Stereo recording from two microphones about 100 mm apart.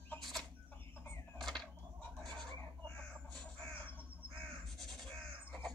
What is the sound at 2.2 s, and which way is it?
Fowl, 5° left (ahead or behind).